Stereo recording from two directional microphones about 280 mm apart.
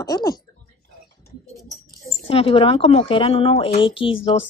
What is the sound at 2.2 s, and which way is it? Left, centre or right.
A woman's voice, centre.